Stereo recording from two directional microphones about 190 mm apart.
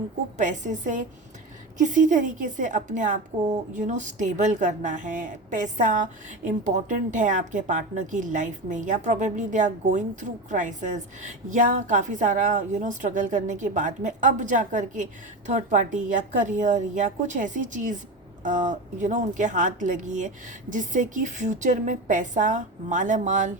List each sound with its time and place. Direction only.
0.3 s speech: 40° right (ahead or behind)